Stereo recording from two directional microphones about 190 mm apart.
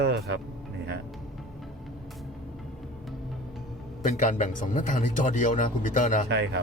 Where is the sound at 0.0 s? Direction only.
60° right (ahead or behind).